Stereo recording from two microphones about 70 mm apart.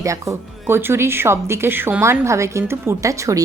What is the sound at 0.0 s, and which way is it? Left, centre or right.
Speech, right.